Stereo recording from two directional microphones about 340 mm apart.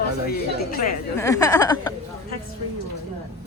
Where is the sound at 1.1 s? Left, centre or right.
Centre.